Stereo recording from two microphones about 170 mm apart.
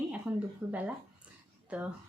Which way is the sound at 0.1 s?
10° right (ahead or behind).